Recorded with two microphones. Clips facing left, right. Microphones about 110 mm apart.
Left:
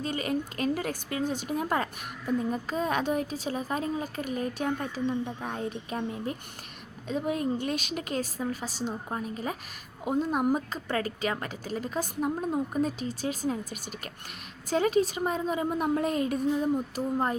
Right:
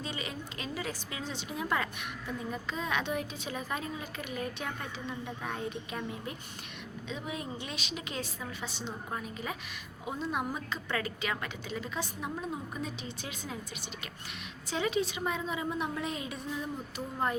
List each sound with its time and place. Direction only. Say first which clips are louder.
0.0 s a woman's voice: left 9 dB; 50° left (ahead or behind)
7.1 s a woman's voice: left 10 dB; 45° left (ahead or behind)
14.7 s a woman's voice: left 6 dB; 45° left (ahead or behind)